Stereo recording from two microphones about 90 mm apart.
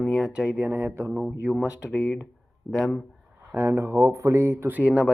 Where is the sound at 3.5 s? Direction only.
20° right (ahead or behind).